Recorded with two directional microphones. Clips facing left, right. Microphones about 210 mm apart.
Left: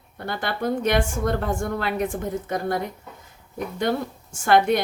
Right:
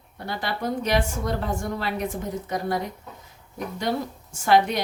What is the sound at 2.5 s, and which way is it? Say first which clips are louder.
A woman's voice: even; 50° left (ahead or behind).